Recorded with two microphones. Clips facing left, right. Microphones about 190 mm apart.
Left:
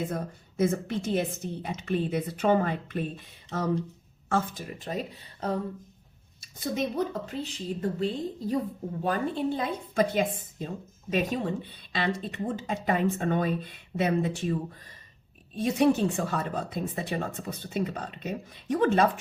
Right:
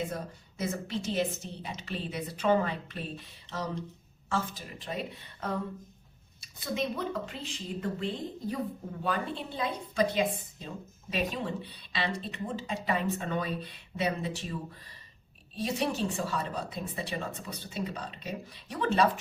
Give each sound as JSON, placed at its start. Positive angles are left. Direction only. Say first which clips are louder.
{"t": 0.1, "sound": "speech", "louder": "left 4 dB", "side_deg": 50}
{"t": 4.3, "sound": "speech", "louder": "left 5 dB", "side_deg": 50}
{"t": 6.4, "sound": "speech", "louder": "left 3 dB", "side_deg": 45}
{"t": 15.5, "sound": "speech", "louder": "left 8 dB", "side_deg": 50}